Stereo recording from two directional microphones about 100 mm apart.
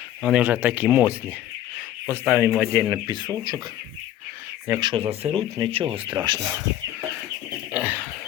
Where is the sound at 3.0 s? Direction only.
45° right (ahead or behind).